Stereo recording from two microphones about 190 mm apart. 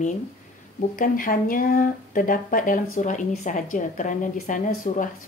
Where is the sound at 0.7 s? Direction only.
45° left (ahead or behind).